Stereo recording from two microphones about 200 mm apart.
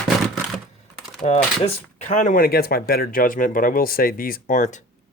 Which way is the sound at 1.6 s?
40° left (ahead or behind).